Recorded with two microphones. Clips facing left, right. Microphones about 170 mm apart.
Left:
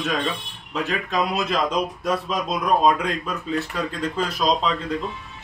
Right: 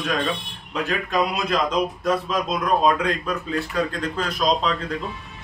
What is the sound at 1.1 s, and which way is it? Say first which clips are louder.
Speech: right 1 dB; centre (ahead or behind).